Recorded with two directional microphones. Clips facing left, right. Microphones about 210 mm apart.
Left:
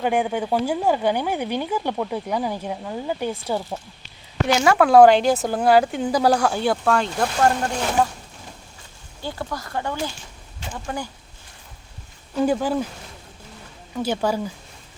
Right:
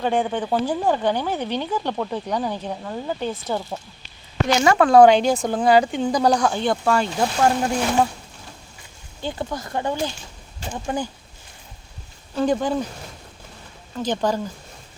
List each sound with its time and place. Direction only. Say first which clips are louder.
0.0 s speech: even; 10° left (ahead or behind)
9.2 s speech: right 2 dB; 20° right (ahead or behind)
12.4 s speech: even; 5° left (ahead or behind)
13.9 s speech: even; 10° left (ahead or behind)